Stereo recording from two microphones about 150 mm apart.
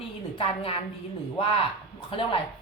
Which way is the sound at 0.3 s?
40° left (ahead or behind).